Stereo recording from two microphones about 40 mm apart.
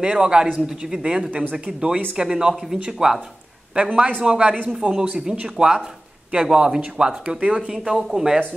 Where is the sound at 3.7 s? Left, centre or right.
Right.